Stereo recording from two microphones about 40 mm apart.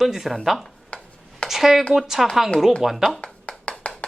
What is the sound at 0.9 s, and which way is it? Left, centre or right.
Rub, left.